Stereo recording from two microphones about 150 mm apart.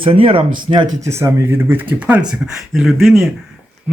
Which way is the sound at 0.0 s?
35° right (ahead or behind).